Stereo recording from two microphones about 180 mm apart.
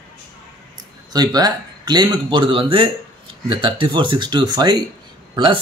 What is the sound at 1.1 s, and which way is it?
A man's voice, 20° right (ahead or behind).